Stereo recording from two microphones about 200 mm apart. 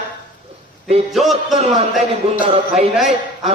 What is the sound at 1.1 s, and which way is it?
Music, centre (ahead or behind).